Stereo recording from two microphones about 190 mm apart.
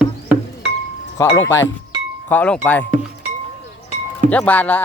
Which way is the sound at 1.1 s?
15° left (ahead or behind).